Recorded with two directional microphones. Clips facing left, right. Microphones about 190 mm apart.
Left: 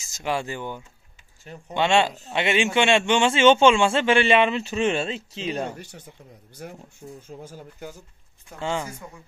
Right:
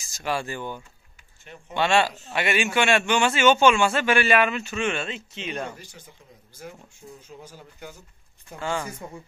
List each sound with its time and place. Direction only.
0.0 s a man's voice: 20° left (ahead or behind)
5.8 s speech: 65° left (ahead or behind)
7.2 s speech: 50° left (ahead or behind)
8.5 s a man's voice: 20° left (ahead or behind)